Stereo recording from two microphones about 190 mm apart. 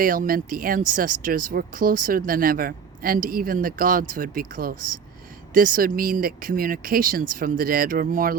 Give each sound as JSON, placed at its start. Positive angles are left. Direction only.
{"t": 0.0, "sound": "speech", "side_deg": -50}